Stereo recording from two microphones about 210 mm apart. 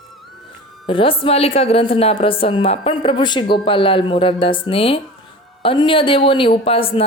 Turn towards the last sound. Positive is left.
turn(degrees=25)  # may be behind; listen again after turning